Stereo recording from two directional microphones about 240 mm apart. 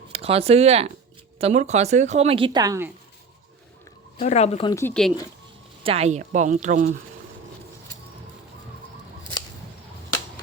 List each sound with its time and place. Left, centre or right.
0.1 s speech: right
4.2 s speech: left
4.7 s speech: centre
5.8 s speech: right